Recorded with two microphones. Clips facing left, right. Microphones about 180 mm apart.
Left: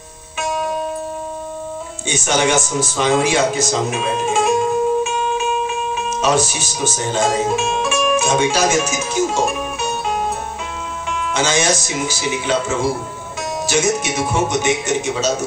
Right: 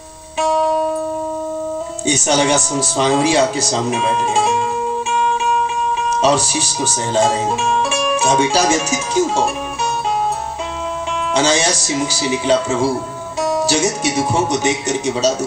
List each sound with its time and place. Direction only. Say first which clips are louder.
0.4 s music: right 6 dB; 35° right (ahead or behind)
2.0 s speech: right 2 dB; 35° right (ahead or behind)
6.0 s speech: right 1 dB; 35° right (ahead or behind)
11.3 s speech: right 2 dB; 35° right (ahead or behind)